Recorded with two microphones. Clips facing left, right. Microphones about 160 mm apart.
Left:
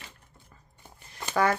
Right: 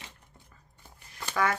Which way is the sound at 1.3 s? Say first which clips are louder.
Left 4 dB; 35° left (ahead or behind).